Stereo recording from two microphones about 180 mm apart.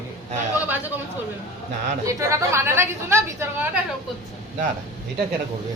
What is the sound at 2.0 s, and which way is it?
A woman's voice, 15° right (ahead or behind).